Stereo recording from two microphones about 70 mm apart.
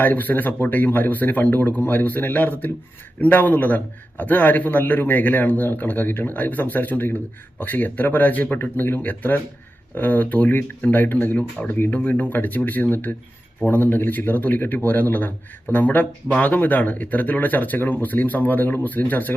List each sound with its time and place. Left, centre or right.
0.0 s speech: left